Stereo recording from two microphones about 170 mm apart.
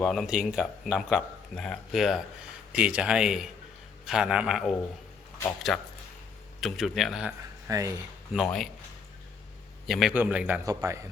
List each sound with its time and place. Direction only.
0.0 s speech: centre (ahead or behind)
7.7 s speech: 20° right (ahead or behind)
8.3 s speech: centre (ahead or behind)
9.8 s a man's voice: centre (ahead or behind)
10.7 s speech: 20° right (ahead or behind)